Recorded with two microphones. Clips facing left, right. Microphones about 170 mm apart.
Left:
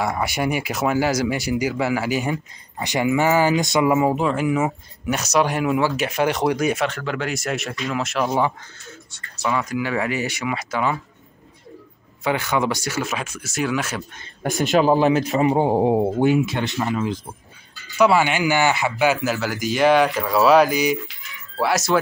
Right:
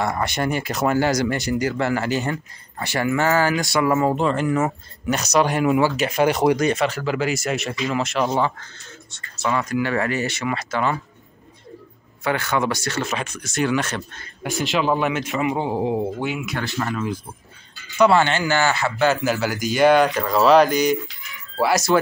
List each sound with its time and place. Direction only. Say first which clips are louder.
0.0 s speech: even; 5° left (ahead or behind)
8.4 s speech: left 1 dB; 15° left (ahead or behind)
12.2 s speech: left 1 dB; 15° left (ahead or behind)
14.4 s a man's voice: left 4 dB; 45° left (ahead or behind)
16.4 s speech: left 2 dB; 20° left (ahead or behind)
17.9 s speech: right 1 dB; 5° left (ahead or behind)
19.2 s speech: right 1 dB; centre (ahead or behind)